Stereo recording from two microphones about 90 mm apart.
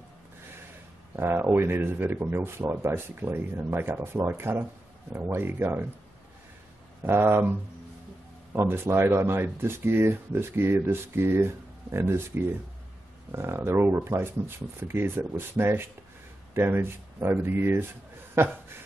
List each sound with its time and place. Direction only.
1.1 s speech: 25° right (ahead or behind)
7.0 s speech: 25° right (ahead or behind)
8.5 s speech: 25° right (ahead or behind)